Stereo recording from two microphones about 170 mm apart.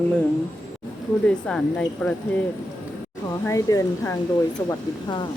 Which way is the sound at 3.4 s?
20° left (ahead or behind).